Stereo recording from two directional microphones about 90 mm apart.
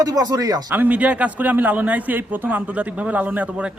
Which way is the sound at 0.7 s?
20° right (ahead or behind).